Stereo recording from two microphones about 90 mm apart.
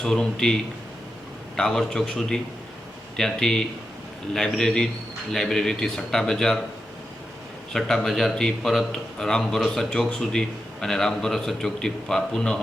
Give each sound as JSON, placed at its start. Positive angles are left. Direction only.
{"t": 0.0, "sound": "a man's voice", "side_deg": 5}
{"t": 1.5, "sound": "a man's voice", "side_deg": 5}
{"t": 7.7, "sound": "a man's voice", "side_deg": 5}